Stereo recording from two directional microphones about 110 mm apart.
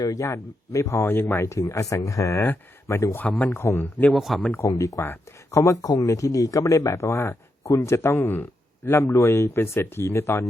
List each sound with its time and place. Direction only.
0.0 s speech: 30° left (ahead or behind)
3.2 s speech: 10° left (ahead or behind)
3.5 s speech: 25° left (ahead or behind)
4.1 s speech: centre (ahead or behind)
4.4 s speech: 25° left (ahead or behind)